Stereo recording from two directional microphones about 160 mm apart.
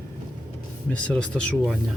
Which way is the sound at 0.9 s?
5° left (ahead or behind).